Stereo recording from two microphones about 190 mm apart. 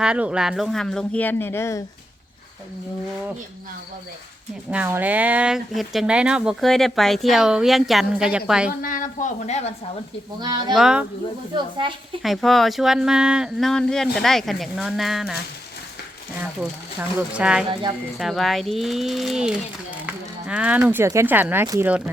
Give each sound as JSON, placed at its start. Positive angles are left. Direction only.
{"t": 0.0, "sound": "speech", "side_deg": -5}
{"t": 4.7, "sound": "speech", "side_deg": -10}
{"t": 8.8, "sound": "speech", "side_deg": 45}
{"t": 10.4, "sound": "speech", "side_deg": -20}
{"t": 10.8, "sound": "speech", "side_deg": -5}
{"t": 11.5, "sound": "speech", "side_deg": -25}
{"t": 12.2, "sound": "speech", "side_deg": 0}
{"t": 17.0, "sound": "speech", "side_deg": -10}